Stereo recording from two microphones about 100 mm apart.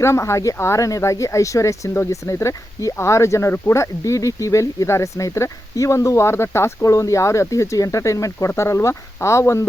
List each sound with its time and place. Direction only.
0.0 s speech: 30° left (ahead or behind)